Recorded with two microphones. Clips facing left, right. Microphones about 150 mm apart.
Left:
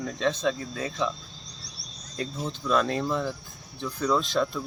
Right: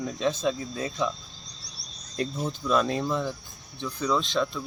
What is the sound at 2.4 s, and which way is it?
Speech, 5° right (ahead or behind).